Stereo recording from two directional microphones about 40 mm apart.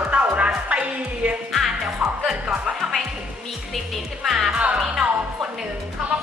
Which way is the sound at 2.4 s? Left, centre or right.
Centre.